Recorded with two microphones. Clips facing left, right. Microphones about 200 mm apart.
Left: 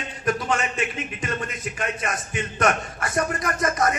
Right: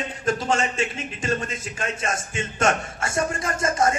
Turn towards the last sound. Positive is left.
turn(degrees=-25)  # may be behind; listen again after turning